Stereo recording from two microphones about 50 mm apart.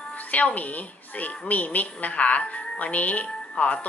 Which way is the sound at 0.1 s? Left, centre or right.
Left.